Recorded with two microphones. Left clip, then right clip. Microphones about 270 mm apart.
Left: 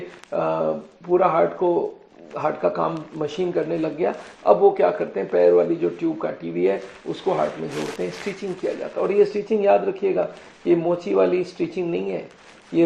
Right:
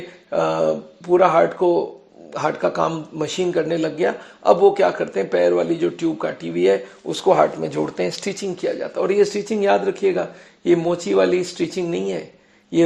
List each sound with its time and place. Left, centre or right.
0.3 s speech: right